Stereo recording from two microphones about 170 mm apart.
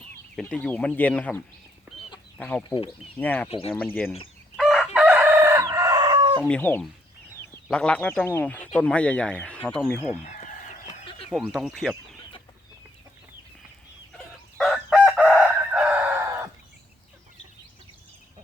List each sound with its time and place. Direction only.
0.3 s speech: 5° left (ahead or behind)
2.4 s speech: 10° left (ahead or behind)
2.6 s speech: 30° left (ahead or behind)
3.2 s speech: 10° left (ahead or behind)
4.5 s chicken: centre (ahead or behind); by 6.4 s 25° right (ahead or behind)
6.4 s speech: 10° left (ahead or behind)
10.2 s fowl: 45° left (ahead or behind)
11.3 s speech: centre (ahead or behind)
14.6 s chicken: 5° left (ahead or behind)
15.1 s chicken: 5° right (ahead or behind)